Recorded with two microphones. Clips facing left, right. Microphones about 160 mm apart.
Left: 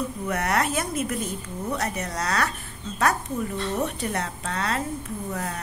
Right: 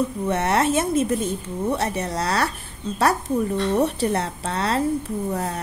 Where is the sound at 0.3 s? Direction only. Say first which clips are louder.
Right 4 dB; 25° right (ahead or behind).